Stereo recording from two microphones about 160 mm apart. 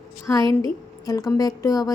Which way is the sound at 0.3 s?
15° left (ahead or behind).